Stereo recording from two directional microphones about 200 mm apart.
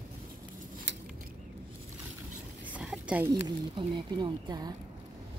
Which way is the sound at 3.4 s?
25° right (ahead or behind).